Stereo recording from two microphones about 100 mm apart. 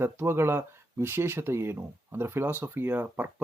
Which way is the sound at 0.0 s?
25° right (ahead or behind).